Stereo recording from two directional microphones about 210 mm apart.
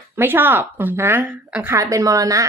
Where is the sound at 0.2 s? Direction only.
10° right (ahead or behind).